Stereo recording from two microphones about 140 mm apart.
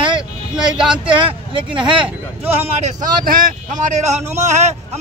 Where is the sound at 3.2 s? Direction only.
90° right; by 4.7 s 55° right (ahead or behind).